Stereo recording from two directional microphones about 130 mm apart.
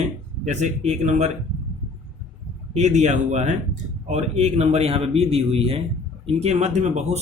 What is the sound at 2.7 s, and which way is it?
A man's voice, 65° right (ahead or behind).